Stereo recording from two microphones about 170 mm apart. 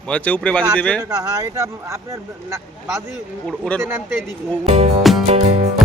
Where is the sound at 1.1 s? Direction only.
20° right (ahead or behind).